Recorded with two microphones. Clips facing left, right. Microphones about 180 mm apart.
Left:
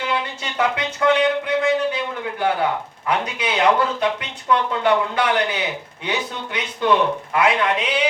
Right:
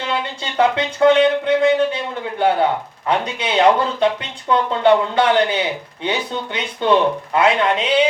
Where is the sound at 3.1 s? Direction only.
25° right (ahead or behind).